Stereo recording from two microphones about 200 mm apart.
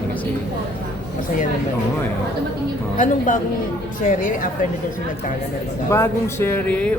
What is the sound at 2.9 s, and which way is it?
A woman's voice, 40° left (ahead or behind).